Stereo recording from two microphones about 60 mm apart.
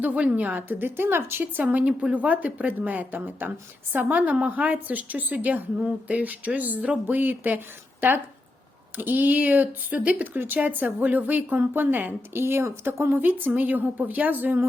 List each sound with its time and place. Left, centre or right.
0.0 s a woman's voice: right
1.9 s speech: centre
2.1 s a woman's voice: right
9.0 s a woman's voice: right